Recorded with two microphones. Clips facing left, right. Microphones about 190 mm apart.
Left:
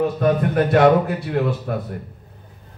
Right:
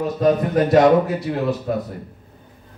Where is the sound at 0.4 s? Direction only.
55° left (ahead or behind).